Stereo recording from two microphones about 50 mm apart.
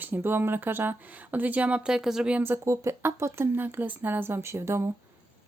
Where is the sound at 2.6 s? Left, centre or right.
Right.